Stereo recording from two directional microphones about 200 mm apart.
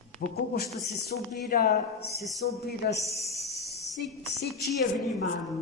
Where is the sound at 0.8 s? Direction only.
55° left (ahead or behind).